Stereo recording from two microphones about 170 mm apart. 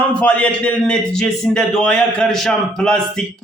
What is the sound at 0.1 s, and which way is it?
A man's voice, 10° left (ahead or behind).